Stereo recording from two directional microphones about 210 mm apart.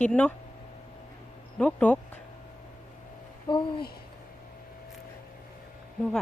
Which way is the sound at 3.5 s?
25° left (ahead or behind).